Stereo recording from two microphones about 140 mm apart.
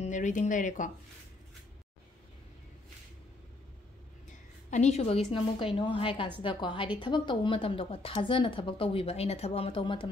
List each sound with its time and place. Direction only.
0.0 s speech: 60° left (ahead or behind)
4.6 s a woman's voice: 55° left (ahead or behind)
5.8 s speech: 40° left (ahead or behind)